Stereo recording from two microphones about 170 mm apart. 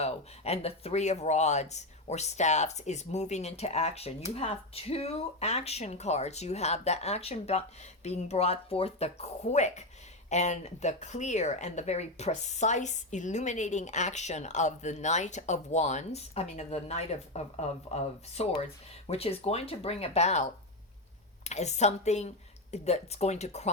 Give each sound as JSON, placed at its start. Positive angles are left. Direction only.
{"t": 0.0, "sound": "speech", "side_deg": 40}